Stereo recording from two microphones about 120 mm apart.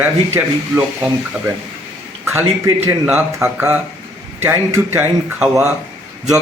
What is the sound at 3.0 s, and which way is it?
Speech, 15° right (ahead or behind).